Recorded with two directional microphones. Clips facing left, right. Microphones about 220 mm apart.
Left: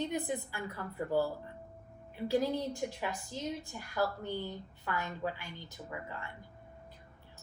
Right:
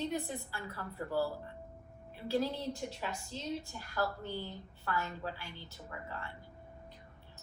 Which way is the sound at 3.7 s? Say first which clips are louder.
Left 2 dB; 10° left (ahead or behind).